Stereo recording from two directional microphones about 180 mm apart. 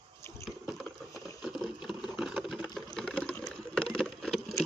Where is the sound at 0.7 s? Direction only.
Centre (ahead or behind).